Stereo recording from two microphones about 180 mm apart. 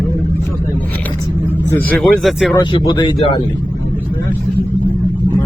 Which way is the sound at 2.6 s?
25° left (ahead or behind).